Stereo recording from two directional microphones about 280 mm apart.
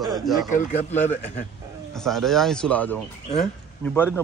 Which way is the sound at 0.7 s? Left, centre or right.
Left.